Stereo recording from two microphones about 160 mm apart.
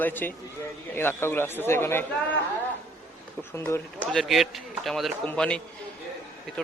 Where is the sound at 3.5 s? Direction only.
15° left (ahead or behind).